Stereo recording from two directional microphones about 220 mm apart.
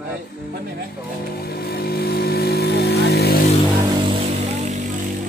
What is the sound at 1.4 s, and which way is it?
Vehicle, 45° left (ahead or behind).